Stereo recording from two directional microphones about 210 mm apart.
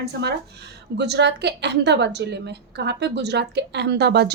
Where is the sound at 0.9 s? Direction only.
55° right (ahead or behind).